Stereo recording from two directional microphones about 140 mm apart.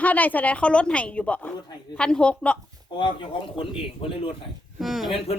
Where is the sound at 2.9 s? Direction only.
35° left (ahead or behind).